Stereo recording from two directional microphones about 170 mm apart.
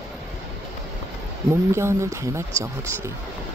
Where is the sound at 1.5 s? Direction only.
15° right (ahead or behind).